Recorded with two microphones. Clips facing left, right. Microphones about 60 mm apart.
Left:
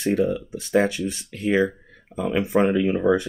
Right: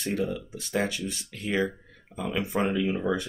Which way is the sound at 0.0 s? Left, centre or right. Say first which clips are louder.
Left 8 dB; left.